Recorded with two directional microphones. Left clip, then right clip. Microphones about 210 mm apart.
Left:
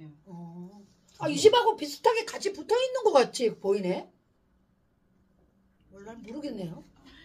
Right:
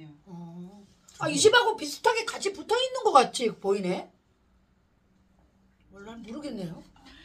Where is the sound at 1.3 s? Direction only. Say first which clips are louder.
Even; 5° left (ahead or behind).